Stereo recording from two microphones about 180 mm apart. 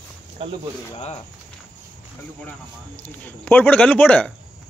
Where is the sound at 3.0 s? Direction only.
10° left (ahead or behind).